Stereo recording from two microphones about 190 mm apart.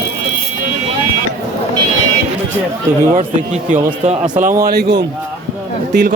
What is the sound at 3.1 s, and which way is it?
Speech, 40° right (ahead or behind).